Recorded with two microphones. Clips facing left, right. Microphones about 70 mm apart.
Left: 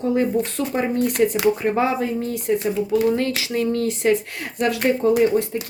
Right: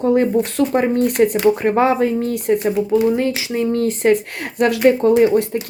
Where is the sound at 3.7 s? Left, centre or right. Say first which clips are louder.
Right 5 dB; right.